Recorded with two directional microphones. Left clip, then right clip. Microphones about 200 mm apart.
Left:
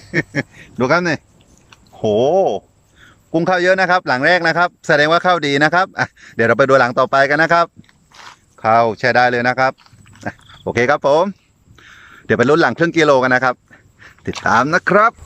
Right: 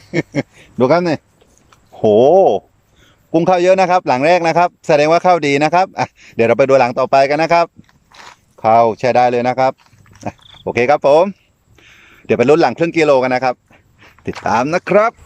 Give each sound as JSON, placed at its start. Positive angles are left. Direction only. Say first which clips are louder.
{"t": 0.0, "sound": "a man's voice", "louder": "even", "side_deg": -20}